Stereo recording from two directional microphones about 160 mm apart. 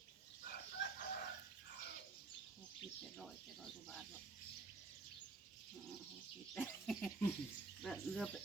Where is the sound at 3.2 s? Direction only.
Centre (ahead or behind).